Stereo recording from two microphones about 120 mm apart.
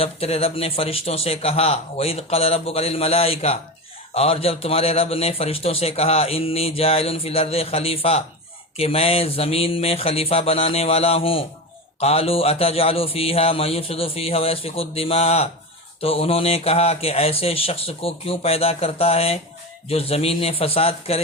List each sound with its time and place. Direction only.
0.0 s a man's voice: 55° left (ahead or behind)